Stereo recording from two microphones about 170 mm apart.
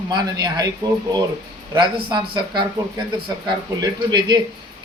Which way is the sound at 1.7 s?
25° right (ahead or behind).